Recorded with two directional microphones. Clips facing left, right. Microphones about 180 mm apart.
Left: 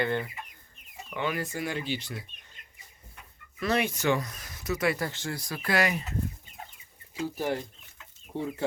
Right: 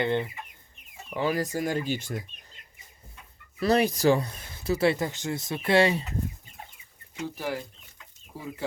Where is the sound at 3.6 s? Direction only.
35° right (ahead or behind).